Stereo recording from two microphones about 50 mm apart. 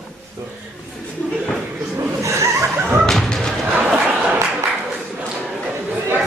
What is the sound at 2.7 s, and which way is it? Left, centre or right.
Music, right.